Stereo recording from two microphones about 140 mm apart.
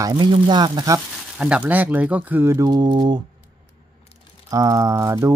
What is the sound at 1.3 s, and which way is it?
Speech, 10° right (ahead or behind).